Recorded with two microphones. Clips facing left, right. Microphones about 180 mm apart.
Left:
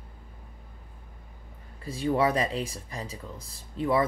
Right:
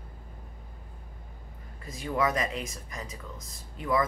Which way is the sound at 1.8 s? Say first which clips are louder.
Left 4 dB; 30° left (ahead or behind).